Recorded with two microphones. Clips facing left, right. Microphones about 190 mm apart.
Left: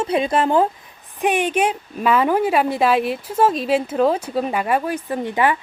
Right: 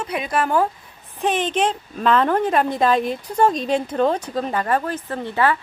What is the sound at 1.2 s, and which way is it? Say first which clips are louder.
A woman's voice: left 2 dB; 10° left (ahead or behind).